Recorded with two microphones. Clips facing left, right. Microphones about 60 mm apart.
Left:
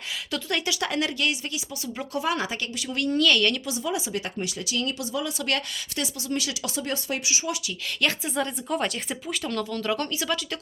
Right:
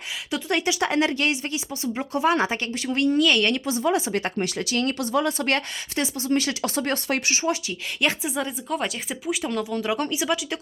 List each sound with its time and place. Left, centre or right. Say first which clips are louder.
0.3 s a woman's voice: right 4 dB; right
3.1 s a woman's voice: right 1 dB; centre
3.8 s speech: right 7 dB; right
5.5 s speech: right 3 dB; right
8.0 s speech: right 1 dB; centre